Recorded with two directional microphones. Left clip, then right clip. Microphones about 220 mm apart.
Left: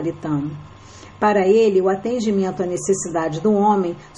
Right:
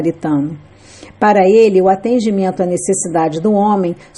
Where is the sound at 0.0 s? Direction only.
35° right (ahead or behind).